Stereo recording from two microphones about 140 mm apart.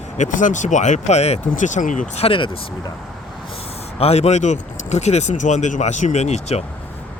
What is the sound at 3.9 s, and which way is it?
Speech, 45° left (ahead or behind).